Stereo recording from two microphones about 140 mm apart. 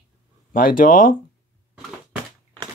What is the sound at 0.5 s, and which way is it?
Speech, 85° left.